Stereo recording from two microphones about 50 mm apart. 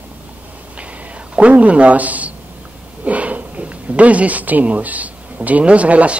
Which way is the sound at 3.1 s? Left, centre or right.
Right.